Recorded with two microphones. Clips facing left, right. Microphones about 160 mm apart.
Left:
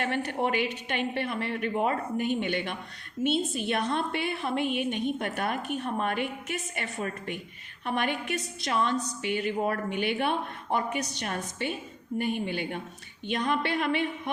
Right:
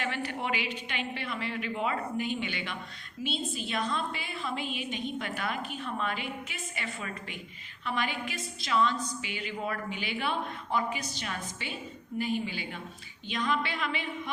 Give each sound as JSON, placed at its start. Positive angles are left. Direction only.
{"t": 0.0, "sound": "a woman's voice", "side_deg": 50}